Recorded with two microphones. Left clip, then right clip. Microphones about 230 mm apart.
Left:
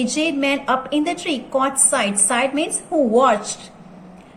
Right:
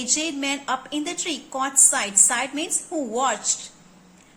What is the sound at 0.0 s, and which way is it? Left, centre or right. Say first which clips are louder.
A woman's voice: left 6 dB; right.